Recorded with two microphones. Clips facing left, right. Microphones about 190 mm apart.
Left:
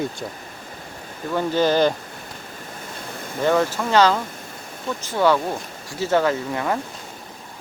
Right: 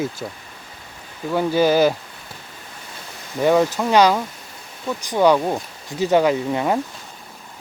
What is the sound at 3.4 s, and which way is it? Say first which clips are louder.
Speech: right 3 dB; 15° right (ahead or behind).